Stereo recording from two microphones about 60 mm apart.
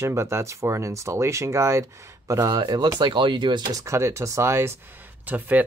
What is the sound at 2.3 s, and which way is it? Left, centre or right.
Speech, right.